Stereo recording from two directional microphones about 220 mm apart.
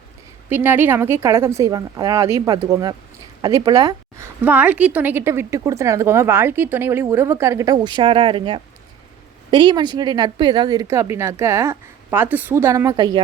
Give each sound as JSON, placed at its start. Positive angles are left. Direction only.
{"t": 0.5, "sound": "a woman's voice", "side_deg": -10}